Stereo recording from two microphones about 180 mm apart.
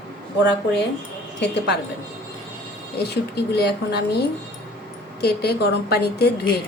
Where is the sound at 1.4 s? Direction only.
70° left (ahead or behind).